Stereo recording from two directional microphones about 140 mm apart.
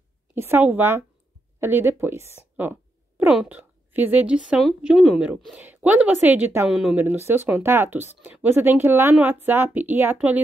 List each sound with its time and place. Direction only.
0.3 s a woman's voice: 15° right (ahead or behind)
6.7 s speech: 5° right (ahead or behind)
7.0 s a woman's voice: 15° right (ahead or behind)